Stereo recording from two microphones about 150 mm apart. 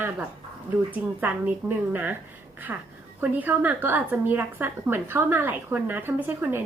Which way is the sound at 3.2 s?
10° right (ahead or behind).